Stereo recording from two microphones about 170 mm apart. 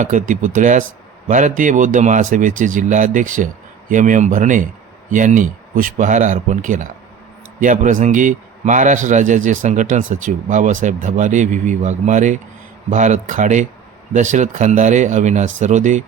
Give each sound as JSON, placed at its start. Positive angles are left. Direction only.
{"t": 0.0, "sound": "a man's voice", "side_deg": -45}